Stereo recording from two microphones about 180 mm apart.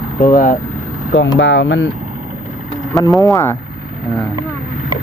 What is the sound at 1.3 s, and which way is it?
Speech, 90° left.